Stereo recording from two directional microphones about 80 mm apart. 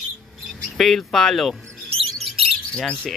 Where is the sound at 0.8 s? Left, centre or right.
Centre.